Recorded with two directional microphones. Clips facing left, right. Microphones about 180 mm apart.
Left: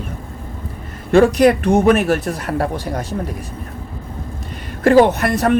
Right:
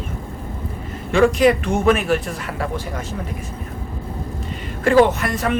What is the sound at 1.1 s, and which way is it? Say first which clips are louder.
Speech: left 3 dB; 40° left (ahead or behind).